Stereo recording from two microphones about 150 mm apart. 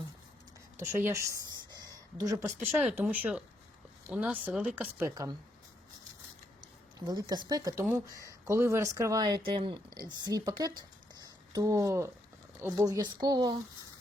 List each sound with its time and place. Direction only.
0.9 s a sound: 15° right (ahead or behind)
2.6 s speech: 10° right (ahead or behind)
7.0 s speech: 25° right (ahead or behind)